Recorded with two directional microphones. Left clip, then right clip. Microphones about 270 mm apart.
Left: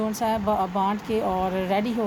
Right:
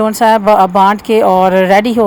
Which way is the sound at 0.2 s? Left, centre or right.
Right.